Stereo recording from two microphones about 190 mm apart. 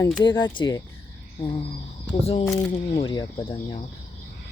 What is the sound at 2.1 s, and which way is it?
Speech, 35° left (ahead or behind).